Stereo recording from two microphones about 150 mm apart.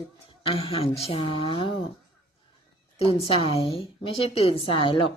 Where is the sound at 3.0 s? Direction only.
40° left (ahead or behind).